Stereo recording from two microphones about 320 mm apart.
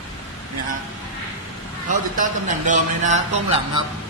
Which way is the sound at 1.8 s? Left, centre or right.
Right.